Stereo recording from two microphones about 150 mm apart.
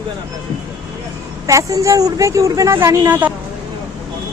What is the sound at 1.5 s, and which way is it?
Speech, 20° right (ahead or behind).